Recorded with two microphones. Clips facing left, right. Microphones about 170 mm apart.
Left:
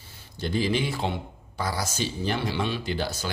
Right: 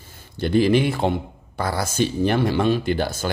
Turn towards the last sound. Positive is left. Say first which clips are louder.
# right 7 dB
turn(degrees=-55)  # may be behind; listen again after turning